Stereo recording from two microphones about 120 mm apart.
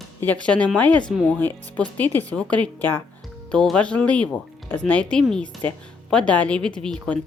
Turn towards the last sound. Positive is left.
turn(degrees=5)  # may be behind; listen again after turning